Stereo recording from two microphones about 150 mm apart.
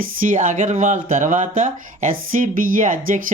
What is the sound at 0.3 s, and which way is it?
Speech, 60° right (ahead or behind).